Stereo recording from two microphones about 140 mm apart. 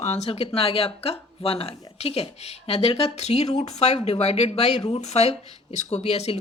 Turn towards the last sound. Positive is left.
turn(degrees=50)  # may be behind; listen again after turning